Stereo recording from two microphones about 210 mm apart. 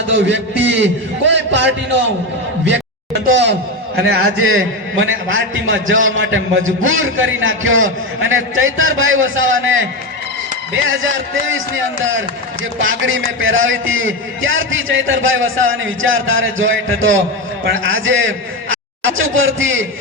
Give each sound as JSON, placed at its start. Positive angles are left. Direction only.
{"t": 0.1, "sound": "a man's voice", "side_deg": -55}
{"t": 3.2, "sound": "a man's voice", "side_deg": -60}
{"t": 4.4, "sound": "a man's voice", "side_deg": -70}
{"t": 10.8, "sound": "a man's voice", "side_deg": -65}